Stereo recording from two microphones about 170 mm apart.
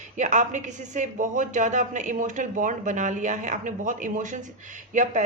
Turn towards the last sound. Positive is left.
turn(degrees=-45)  # may be behind; listen again after turning